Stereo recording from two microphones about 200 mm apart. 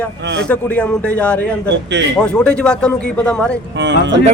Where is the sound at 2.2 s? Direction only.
5° left (ahead or behind).